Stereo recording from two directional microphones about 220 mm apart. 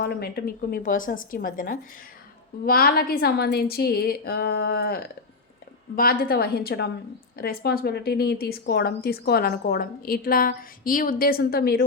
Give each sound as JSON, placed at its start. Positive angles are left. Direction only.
{"t": 0.0, "sound": "speech", "side_deg": 45}